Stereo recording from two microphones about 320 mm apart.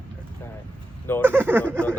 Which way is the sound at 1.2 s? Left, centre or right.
Centre.